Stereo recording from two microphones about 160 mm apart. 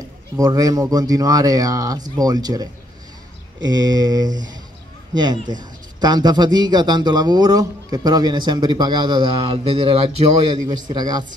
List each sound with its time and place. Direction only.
0.4 s a man's voice: 20° right (ahead or behind); by 10.1 s 35° right (ahead or behind)
10.9 s a man's voice: 25° right (ahead or behind)